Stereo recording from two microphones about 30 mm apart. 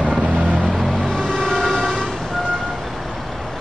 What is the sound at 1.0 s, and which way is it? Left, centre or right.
Music, left.